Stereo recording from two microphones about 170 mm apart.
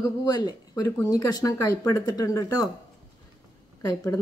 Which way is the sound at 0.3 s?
25° left (ahead or behind).